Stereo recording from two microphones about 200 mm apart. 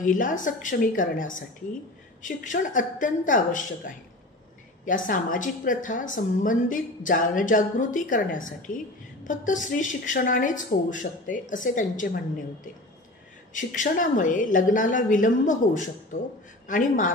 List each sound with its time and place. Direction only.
0.0 s a woman's voice: 40° left (ahead or behind)
13.5 s a woman's voice: 40° left (ahead or behind)